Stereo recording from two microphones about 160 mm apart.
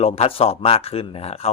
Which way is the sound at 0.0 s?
40° left (ahead or behind).